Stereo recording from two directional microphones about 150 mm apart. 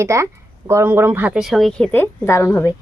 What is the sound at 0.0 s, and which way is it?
A woman's voice, 20° right (ahead or behind).